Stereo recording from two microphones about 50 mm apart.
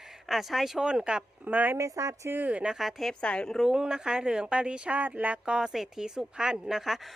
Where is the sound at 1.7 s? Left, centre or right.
Right.